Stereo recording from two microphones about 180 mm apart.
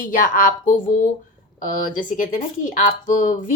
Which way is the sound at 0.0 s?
50° left (ahead or behind).